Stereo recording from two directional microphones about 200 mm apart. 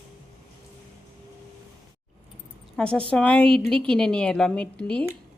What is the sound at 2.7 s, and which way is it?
A woman's voice, 5° left (ahead or behind).